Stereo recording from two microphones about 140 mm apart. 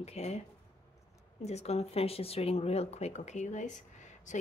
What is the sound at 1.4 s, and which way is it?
Speech, 50° left (ahead or behind).